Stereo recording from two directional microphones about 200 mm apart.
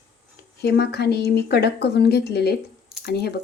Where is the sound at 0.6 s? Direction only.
55° left (ahead or behind).